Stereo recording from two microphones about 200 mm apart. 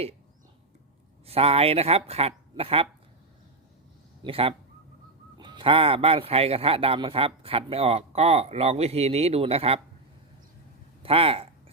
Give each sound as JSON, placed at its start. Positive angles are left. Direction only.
{"t": 1.3, "sound": "speech", "side_deg": -30}
{"t": 4.2, "sound": "speech", "side_deg": -25}
{"t": 11.0, "sound": "speech", "side_deg": -30}